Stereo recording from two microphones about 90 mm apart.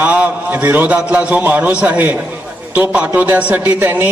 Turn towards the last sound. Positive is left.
turn(degrees=-20)  # may be behind; listen again after turning